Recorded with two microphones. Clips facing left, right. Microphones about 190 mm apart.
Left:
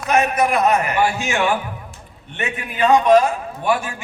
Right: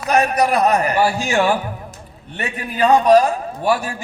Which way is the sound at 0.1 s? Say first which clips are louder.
Right 1 dB; 35° right (ahead or behind).